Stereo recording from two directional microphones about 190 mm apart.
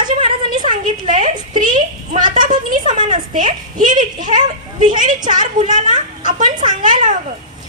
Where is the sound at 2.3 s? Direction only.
45° right (ahead or behind).